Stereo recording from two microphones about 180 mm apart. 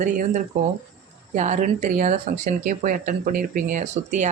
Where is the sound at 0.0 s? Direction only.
45° right (ahead or behind).